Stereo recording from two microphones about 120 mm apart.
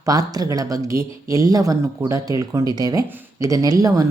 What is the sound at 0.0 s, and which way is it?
A woman's voice, 30° right (ahead or behind).